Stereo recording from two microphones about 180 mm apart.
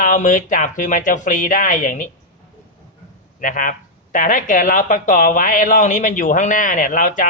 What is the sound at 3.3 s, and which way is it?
Speech, 50° left (ahead or behind).